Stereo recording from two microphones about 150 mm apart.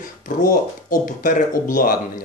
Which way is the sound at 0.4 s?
60° left (ahead or behind).